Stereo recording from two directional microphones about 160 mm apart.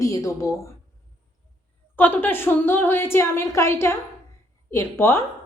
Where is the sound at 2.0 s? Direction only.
10° left (ahead or behind).